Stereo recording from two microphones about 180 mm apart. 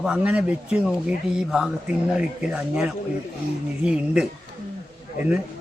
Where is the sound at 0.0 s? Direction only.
5° right (ahead or behind).